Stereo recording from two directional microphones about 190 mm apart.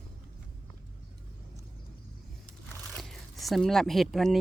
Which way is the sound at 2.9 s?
Centre (ahead or behind).